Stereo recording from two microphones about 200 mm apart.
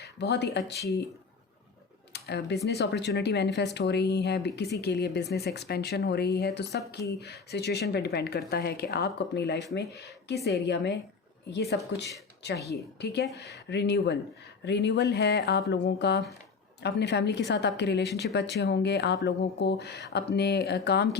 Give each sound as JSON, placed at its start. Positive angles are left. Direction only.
{"t": 0.0, "sound": "speech", "side_deg": 55}
{"t": 0.8, "sound": "speech", "side_deg": 15}
{"t": 2.1, "sound": "speech", "side_deg": 55}